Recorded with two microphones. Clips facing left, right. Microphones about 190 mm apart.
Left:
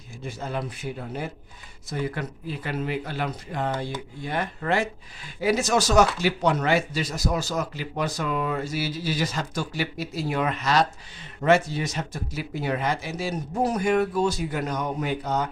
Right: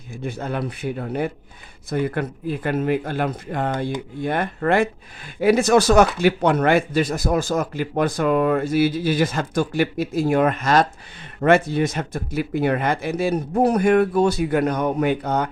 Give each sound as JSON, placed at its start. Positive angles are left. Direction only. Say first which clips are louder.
{"t": 0.2, "sound": "speech", "louder": "right 5 dB", "side_deg": -60}